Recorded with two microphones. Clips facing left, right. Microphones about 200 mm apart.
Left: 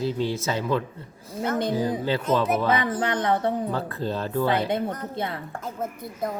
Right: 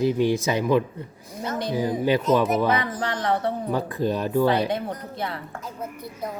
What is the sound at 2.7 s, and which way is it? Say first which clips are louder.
Speech: left 2 dB; 25° left (ahead or behind).